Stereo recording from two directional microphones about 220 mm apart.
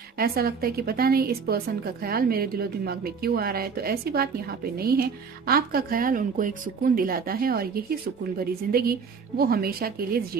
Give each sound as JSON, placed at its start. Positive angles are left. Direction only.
{"t": 0.2, "sound": "speech", "side_deg": -45}